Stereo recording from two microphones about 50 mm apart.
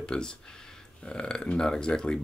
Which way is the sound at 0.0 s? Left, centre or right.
Centre.